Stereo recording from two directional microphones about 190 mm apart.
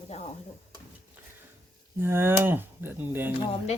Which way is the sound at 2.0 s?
10° right (ahead or behind).